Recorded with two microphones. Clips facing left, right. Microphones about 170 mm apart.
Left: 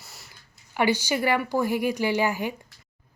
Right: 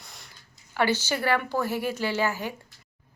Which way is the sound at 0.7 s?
15° left (ahead or behind).